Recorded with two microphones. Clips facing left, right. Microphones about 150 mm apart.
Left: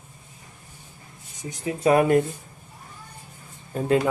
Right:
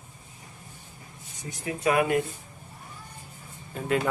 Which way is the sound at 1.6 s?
30° left (ahead or behind).